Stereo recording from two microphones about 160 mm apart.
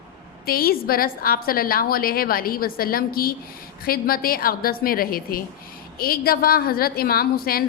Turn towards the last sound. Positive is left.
turn(degrees=70)  # may be behind; listen again after turning